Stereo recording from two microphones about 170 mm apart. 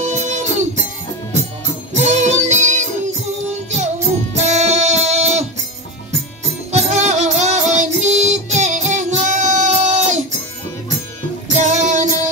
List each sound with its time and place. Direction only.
0.0 s music: 45° right (ahead or behind)
2.0 s music: 40° right (ahead or behind)
4.4 s music: 40° right (ahead or behind)
6.7 s music: 45° right (ahead or behind)
11.4 s music: 45° right (ahead or behind)